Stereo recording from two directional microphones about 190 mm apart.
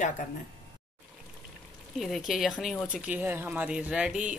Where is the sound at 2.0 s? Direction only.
Centre (ahead or behind).